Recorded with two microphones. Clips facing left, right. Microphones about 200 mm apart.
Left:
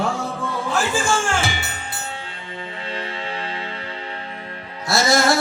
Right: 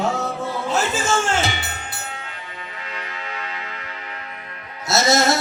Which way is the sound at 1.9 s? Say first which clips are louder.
Left 2 dB; 30° left (ahead or behind).